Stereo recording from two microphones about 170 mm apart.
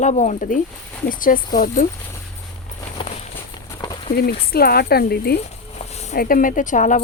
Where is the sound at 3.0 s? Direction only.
30° left (ahead or behind).